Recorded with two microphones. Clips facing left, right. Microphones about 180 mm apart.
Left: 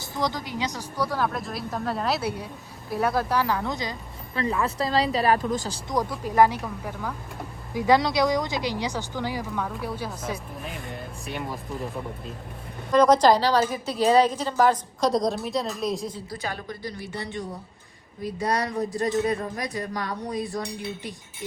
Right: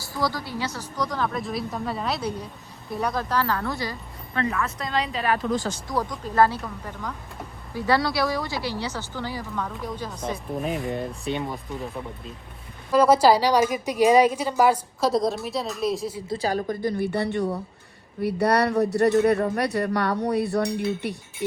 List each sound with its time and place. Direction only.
0.0 s a woman's voice: 20° left (ahead or behind)
4.6 s a woman's voice: 35° left (ahead or behind)
5.9 s a woman's voice: 10° left (ahead or behind)
9.5 s a woman's voice: centre (ahead or behind)
16.3 s a woman's voice: 35° right (ahead or behind); by 21.2 s 65° right (ahead or behind)